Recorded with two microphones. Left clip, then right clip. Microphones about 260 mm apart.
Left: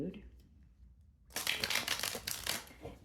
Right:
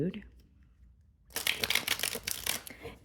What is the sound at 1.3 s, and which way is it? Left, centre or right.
Crushing, right.